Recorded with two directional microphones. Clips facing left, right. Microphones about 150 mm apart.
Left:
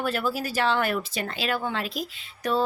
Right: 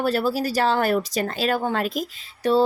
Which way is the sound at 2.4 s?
30° right (ahead or behind).